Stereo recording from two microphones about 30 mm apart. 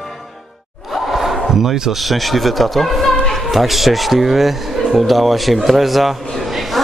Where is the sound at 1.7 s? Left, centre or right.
Centre.